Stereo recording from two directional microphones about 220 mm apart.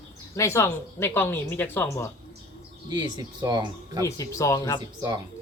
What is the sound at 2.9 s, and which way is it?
Speech, 20° right (ahead or behind).